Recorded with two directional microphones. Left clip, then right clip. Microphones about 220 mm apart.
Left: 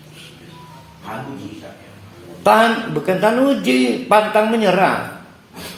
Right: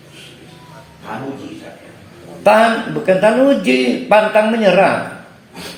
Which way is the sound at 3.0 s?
40° left (ahead or behind).